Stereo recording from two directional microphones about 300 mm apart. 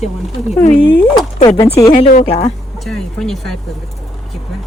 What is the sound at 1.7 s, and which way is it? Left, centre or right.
Speech, left.